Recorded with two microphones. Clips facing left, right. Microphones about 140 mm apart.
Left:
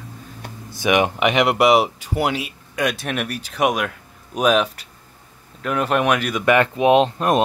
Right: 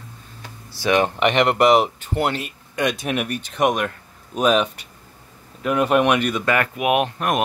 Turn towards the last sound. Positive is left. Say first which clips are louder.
# left 4 dB
turn(degrees=25)  # may be behind; listen again after turning